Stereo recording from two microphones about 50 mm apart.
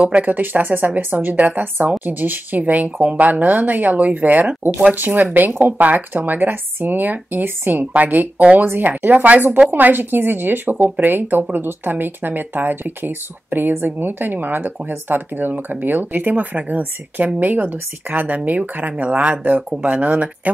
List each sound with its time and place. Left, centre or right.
0.2 s speech: right